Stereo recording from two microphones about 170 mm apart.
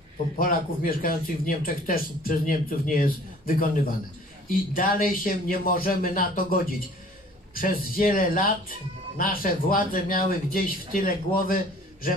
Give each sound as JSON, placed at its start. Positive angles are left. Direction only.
{"t": 0.4, "sound": "speech", "side_deg": 55}